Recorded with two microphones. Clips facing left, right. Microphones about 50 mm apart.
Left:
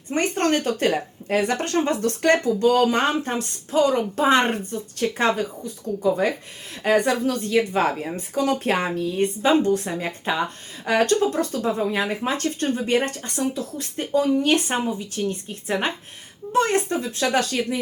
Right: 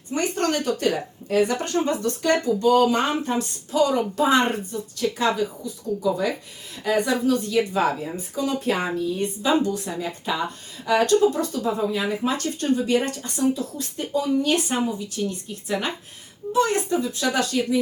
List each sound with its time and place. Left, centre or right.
0.1 s speech: left